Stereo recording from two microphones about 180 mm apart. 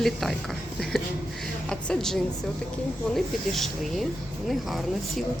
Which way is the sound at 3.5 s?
Centre (ahead or behind).